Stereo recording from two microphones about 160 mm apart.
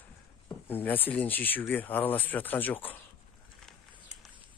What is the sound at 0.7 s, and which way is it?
Speech, 10° left (ahead or behind).